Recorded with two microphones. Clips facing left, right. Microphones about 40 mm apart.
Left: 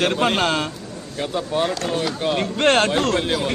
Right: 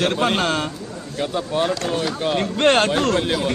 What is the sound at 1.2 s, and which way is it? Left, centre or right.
A man's voice, centre.